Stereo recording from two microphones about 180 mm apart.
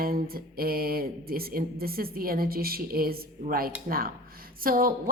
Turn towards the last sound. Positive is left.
turn(degrees=-50)  # may be behind; listen again after turning